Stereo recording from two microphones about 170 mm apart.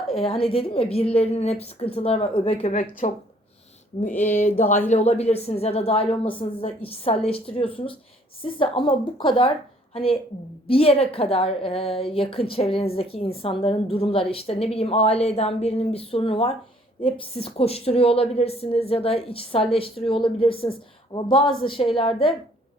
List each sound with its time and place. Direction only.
0.1 s a woman's voice: 35° left (ahead or behind)
3.0 s speech: 45° left (ahead or behind)
4.1 s a sound: 10° left (ahead or behind)
4.9 s a woman's voice: 40° left (ahead or behind)